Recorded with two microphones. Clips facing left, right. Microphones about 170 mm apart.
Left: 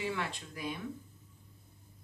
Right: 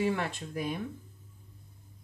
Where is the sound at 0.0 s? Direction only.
45° right (ahead or behind).